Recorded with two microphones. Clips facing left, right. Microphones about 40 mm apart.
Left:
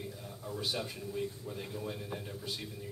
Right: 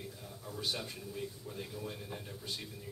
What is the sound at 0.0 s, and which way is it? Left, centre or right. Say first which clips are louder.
A man's voice: left 3 dB; centre.